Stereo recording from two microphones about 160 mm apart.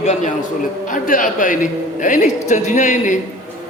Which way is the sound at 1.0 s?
55° left (ahead or behind).